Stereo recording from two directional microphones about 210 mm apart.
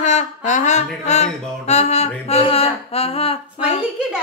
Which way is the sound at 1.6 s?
30° left (ahead or behind).